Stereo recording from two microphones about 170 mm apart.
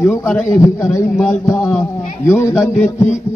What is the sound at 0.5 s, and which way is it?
A man's voice, 20° left (ahead or behind).